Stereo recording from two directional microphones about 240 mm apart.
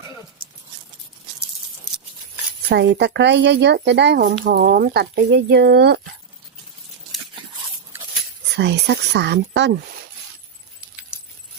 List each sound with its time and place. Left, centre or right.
2.6 s speech: right
8.5 s speech: right